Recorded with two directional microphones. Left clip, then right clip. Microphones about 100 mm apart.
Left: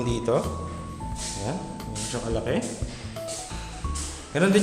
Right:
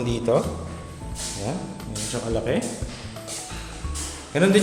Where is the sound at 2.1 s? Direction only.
5° left (ahead or behind).